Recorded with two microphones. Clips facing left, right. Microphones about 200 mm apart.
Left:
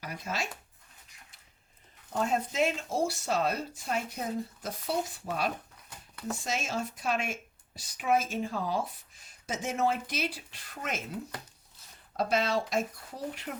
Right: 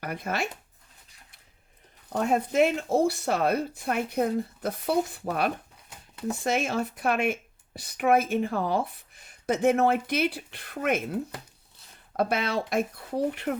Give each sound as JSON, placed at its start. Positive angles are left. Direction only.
{"t": 0.0, "sound": "speech", "side_deg": -55}
{"t": 2.1, "sound": "speech", "side_deg": -60}